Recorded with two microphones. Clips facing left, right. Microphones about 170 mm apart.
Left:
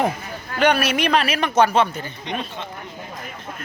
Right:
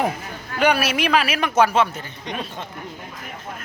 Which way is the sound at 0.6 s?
5° right (ahead or behind).